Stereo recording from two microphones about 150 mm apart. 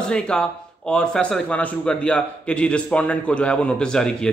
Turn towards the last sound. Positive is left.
turn(degrees=5)  # may be behind; listen again after turning